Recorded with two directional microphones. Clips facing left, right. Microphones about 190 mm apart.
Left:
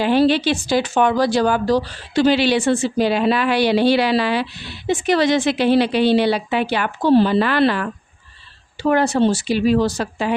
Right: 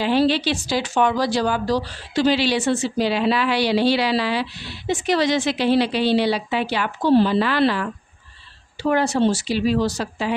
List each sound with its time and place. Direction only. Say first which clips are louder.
0.0 s a woman's voice: left 3 dB; 55° left (ahead or behind)